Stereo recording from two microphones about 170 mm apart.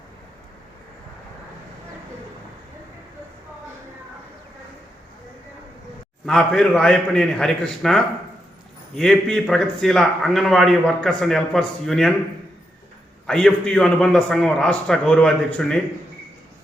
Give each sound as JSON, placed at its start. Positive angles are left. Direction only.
{"t": 6.2, "sound": "a man's voice", "side_deg": 5}
{"t": 13.2, "sound": "a man's voice", "side_deg": 5}